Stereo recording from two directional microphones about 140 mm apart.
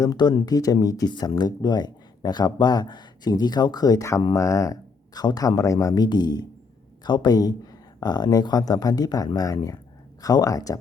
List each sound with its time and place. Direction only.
0.0 s speech: 30° left (ahead or behind)
4.4 s speech: 20° left (ahead or behind)